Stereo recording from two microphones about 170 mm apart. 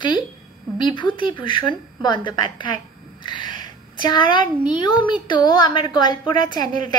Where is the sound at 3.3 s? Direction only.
25° left (ahead or behind).